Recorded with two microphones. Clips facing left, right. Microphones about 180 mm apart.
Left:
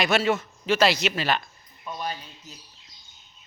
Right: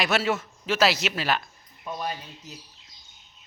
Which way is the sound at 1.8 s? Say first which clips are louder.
Right 1 dB; 5° right (ahead or behind).